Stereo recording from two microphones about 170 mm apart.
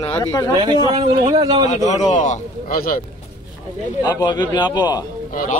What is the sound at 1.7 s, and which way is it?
A man's voice, 40° left (ahead or behind).